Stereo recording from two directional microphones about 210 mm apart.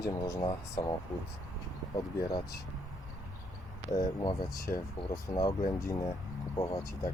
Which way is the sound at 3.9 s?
20° left (ahead or behind).